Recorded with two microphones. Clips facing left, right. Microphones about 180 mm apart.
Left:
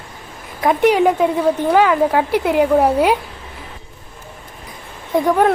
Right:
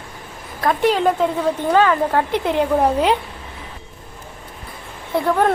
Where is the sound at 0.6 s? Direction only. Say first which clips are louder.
Left 4 dB; 15° left (ahead or behind).